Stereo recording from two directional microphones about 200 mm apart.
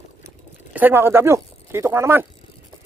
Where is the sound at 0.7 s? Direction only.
10° right (ahead or behind).